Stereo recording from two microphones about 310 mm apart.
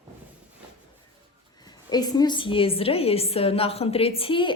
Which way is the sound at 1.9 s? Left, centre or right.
Centre.